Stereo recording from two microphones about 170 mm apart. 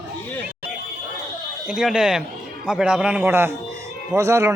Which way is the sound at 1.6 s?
5° right (ahead or behind).